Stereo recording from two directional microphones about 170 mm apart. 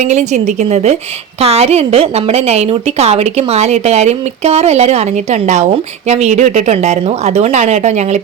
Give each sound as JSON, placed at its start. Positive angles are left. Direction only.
{"t": 0.0, "sound": "a woman's voice", "side_deg": -45}